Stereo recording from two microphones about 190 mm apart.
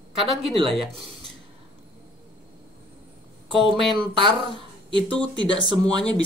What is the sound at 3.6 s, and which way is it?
Speech, 25° right (ahead or behind).